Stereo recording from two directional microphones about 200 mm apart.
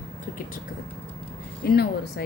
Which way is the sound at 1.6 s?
50° left (ahead or behind).